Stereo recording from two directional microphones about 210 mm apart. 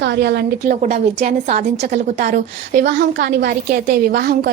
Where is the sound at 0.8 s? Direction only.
35° right (ahead or behind).